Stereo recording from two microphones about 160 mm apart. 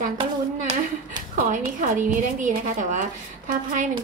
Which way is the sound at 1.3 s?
55° right (ahead or behind).